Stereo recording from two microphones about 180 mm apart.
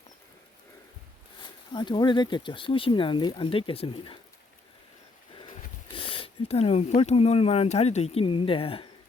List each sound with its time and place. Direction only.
1.4 s speech: 25° left (ahead or behind)
5.9 s speech: 30° left (ahead or behind)